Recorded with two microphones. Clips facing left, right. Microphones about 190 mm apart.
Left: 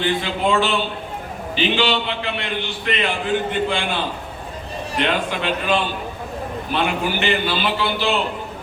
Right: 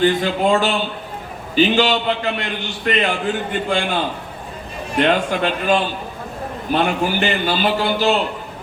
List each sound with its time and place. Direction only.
0.0 s a man's voice: 45° right (ahead or behind)